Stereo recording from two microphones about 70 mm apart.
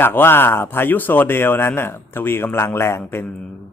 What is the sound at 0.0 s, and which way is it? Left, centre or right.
Speech, left.